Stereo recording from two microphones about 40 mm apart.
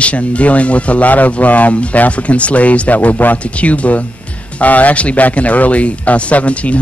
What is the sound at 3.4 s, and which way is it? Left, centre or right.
A man's voice, left.